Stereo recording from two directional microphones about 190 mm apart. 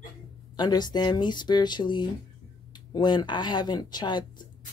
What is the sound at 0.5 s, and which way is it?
Speech, 20° left (ahead or behind).